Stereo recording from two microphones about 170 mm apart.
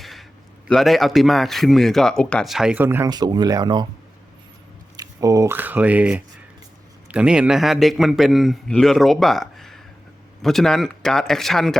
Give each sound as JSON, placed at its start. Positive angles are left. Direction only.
{"t": 0.0, "sound": "a sound", "side_deg": 0}
{"t": 0.7, "sound": "a man's voice", "side_deg": 0}
{"t": 3.1, "sound": "speech", "side_deg": -25}
{"t": 4.9, "sound": "a man's voice", "side_deg": -20}